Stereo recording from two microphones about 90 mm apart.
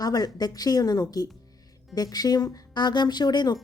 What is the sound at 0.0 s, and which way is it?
A woman's voice, 45° left (ahead or behind).